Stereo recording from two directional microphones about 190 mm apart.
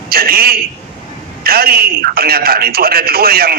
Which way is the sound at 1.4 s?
55° right (ahead or behind).